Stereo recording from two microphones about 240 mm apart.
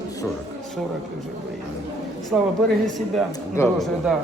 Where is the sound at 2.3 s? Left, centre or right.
Centre.